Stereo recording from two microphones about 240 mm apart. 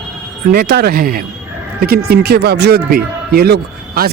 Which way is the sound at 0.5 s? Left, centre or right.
Right.